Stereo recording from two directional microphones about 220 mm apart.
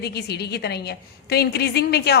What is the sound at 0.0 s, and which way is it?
A woman's voice, 45° left (ahead or behind).